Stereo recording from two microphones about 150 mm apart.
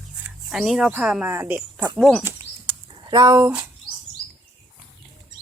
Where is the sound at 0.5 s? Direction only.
Centre (ahead or behind).